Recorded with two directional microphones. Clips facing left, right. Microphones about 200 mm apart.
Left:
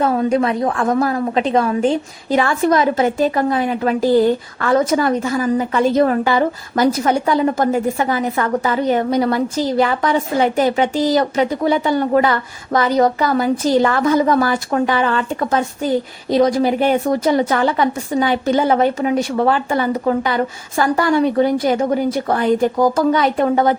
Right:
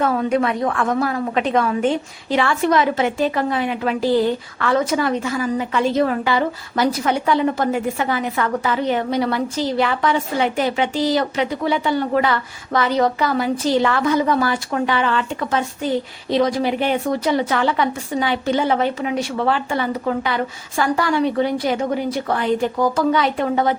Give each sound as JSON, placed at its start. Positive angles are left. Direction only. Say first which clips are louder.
{"t": 0.0, "sound": "a woman's voice", "louder": "left 2 dB", "side_deg": 30}